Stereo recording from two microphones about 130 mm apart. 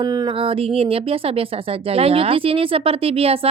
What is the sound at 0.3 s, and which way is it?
Speech, 45° right (ahead or behind).